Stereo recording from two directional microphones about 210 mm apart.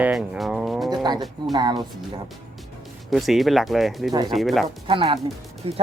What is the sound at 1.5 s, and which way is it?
Speech, 20° right (ahead or behind).